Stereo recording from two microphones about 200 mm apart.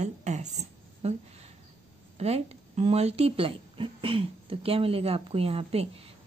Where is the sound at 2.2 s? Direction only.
30° right (ahead or behind).